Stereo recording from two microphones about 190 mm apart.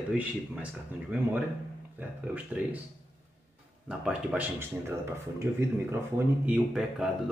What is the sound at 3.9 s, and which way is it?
Speech, 5° right (ahead or behind).